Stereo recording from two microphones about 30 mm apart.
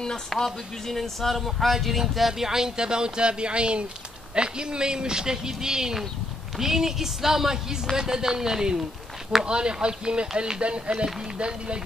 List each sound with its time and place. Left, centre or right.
0.4 s a woman's voice: centre; by 11.8 s right